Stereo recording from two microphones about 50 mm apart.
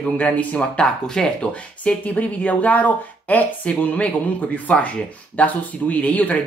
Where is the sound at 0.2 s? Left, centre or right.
Left.